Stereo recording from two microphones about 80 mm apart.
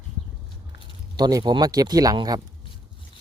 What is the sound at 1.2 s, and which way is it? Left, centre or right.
A man's voice, right.